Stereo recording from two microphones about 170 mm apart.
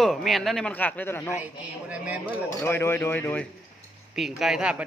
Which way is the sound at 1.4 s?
10° right (ahead or behind).